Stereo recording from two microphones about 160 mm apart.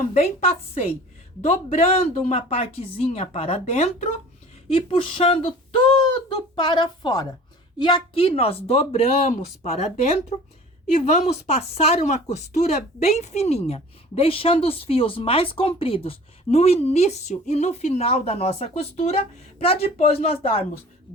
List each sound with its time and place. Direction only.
0.1 s speech: 40° left (ahead or behind)